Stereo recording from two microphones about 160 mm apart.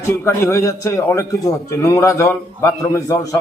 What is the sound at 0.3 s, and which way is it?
A man's voice, 15° left (ahead or behind).